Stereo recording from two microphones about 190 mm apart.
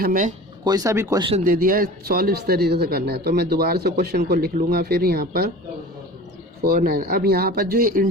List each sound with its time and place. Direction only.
0.0 s speech: 45° right (ahead or behind)
0.6 s speech: 20° right (ahead or behind)
1.5 s a man's voice: 50° right (ahead or behind)
6.6 s speech: 55° right (ahead or behind)